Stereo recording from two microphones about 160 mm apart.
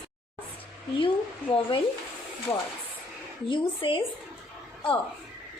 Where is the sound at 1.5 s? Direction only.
35° left (ahead or behind).